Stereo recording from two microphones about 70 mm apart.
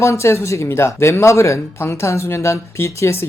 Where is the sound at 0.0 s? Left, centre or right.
Left.